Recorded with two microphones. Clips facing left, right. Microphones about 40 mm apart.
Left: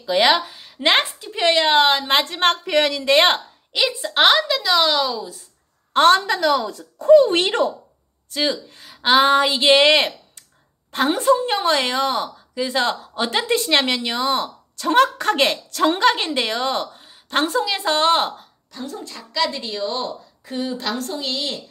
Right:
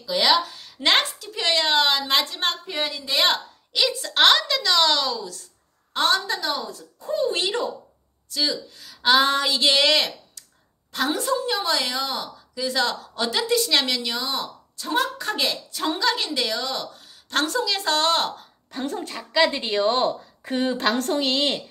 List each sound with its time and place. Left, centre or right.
0.0 s speech: left
2.6 s speech: left
3.1 s a woman's voice: left
3.8 s a woman's voice: centre
5.9 s speech: left
6.4 s speech: left
6.7 s speech: left
8.3 s a woman's voice: left
18.8 s a woman's voice: right
19.1 s a woman's voice: right